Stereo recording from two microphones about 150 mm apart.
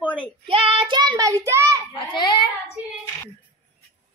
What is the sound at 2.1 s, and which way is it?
Speech, 30° left (ahead or behind).